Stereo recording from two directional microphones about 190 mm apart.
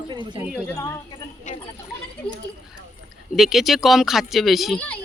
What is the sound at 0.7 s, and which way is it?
Speech, 15° left (ahead or behind).